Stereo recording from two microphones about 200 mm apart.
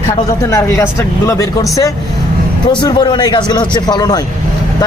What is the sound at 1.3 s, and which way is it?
A man's voice, 15° left (ahead or behind).